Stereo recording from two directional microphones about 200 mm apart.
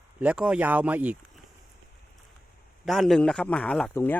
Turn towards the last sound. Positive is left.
turn(degrees=5)  # may be behind; listen again after turning